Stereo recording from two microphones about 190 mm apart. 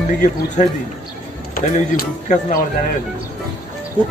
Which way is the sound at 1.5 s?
45° left (ahead or behind).